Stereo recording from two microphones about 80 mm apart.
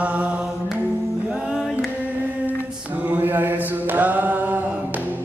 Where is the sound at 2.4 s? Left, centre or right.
Right.